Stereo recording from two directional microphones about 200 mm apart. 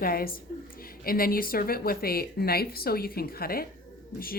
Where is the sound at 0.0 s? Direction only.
45° left (ahead or behind).